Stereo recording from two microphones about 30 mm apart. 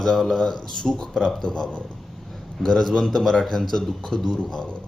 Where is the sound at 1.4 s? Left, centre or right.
Left.